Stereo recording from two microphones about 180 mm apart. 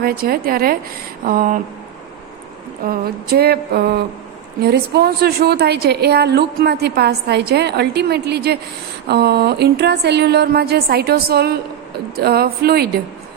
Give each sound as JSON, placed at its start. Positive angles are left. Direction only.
{"t": 0.0, "sound": "a woman's voice", "side_deg": -55}
{"t": 1.2, "sound": "a sound", "side_deg": -50}
{"t": 2.8, "sound": "a woman's voice", "side_deg": -60}